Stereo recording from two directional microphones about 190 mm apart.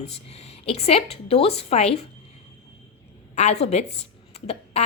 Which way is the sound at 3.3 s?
35° left (ahead or behind).